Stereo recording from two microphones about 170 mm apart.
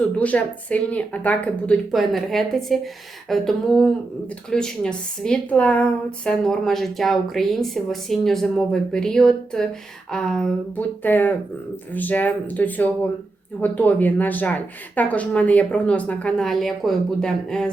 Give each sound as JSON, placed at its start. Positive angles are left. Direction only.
{"t": 0.2, "sound": "a woman's voice", "side_deg": 10}